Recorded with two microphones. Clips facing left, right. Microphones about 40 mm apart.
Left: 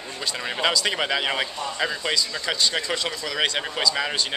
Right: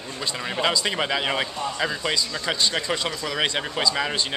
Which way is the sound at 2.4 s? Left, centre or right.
Centre.